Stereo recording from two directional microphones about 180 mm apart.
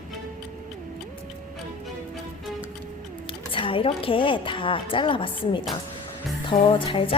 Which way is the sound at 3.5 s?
30° left (ahead or behind).